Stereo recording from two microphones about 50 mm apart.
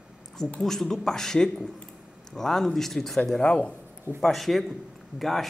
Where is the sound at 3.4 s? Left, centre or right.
Centre.